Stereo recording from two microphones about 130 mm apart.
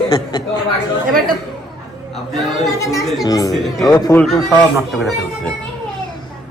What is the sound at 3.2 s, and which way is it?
Speech, 25° left (ahead or behind).